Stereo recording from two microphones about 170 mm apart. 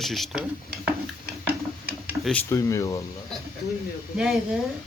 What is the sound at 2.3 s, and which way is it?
Speech, 15° left (ahead or behind).